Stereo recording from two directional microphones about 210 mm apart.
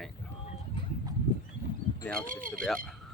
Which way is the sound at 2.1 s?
40° right (ahead or behind).